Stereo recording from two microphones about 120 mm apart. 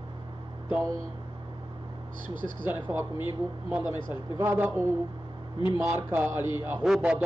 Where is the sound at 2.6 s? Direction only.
15° right (ahead or behind).